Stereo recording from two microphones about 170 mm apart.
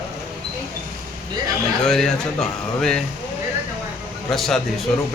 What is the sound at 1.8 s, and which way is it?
A man's voice, 5° left (ahead or behind).